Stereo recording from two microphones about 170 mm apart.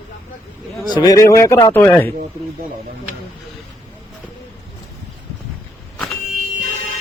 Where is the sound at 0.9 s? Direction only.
20° left (ahead or behind).